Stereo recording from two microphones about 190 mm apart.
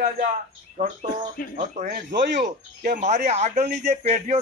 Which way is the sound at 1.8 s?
40° right (ahead or behind).